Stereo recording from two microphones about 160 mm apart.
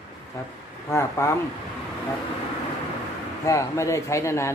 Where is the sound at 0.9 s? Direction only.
15° left (ahead or behind).